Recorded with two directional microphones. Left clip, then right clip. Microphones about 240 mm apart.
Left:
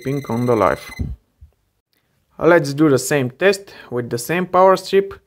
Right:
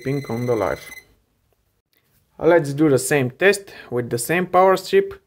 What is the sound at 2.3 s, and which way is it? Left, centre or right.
Speech, left.